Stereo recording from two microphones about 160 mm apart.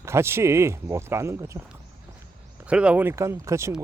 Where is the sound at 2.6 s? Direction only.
5° right (ahead or behind).